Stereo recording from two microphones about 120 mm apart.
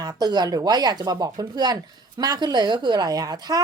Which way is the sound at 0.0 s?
35° right (ahead or behind).